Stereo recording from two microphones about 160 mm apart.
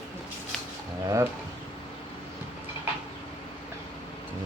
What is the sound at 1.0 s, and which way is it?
Speech, 20° right (ahead or behind).